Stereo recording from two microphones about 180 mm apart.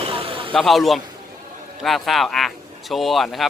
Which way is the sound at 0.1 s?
30° right (ahead or behind).